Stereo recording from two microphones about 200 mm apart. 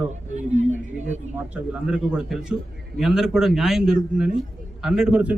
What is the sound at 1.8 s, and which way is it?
Speech, 5° right (ahead or behind).